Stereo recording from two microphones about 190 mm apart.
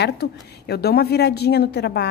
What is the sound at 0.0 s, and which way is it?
A woman's voice, 60° left (ahead or behind).